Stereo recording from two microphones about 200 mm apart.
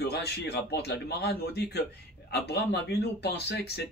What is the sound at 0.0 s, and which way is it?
Speech, 55° left (ahead or behind).